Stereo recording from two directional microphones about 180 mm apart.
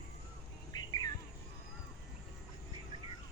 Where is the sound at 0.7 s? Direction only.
20° left (ahead or behind).